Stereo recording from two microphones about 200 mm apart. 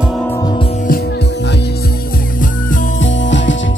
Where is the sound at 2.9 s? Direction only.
65° left (ahead or behind).